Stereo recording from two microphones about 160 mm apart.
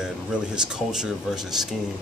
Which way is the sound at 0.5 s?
5° right (ahead or behind).